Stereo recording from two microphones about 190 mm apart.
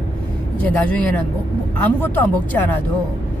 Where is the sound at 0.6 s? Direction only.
5° left (ahead or behind).